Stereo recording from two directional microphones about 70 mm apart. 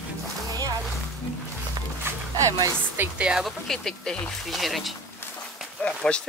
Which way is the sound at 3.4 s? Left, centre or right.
Centre.